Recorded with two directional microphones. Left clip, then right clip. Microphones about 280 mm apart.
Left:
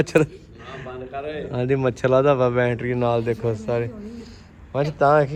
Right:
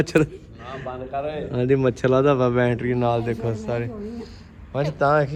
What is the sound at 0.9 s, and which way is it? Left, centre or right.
Speech, centre.